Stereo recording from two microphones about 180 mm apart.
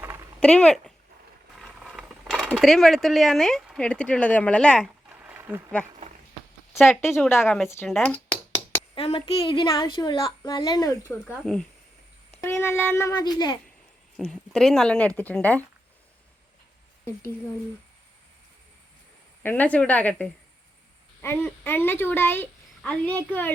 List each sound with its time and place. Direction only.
0.3 s speech: 5° left (ahead or behind)
5.0 s a sound: 10° right (ahead or behind)
7.3 s speech: 15° left (ahead or behind)
7.9 s a woman's voice: centre (ahead or behind)
9.0 s speech: 30° left (ahead or behind)
12.4 s speech: 10° left (ahead or behind)
14.2 s a woman's voice: centre (ahead or behind)
19.4 s a woman's voice: 10° left (ahead or behind)